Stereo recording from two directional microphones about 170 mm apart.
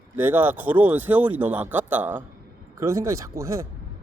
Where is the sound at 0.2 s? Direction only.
10° right (ahead or behind).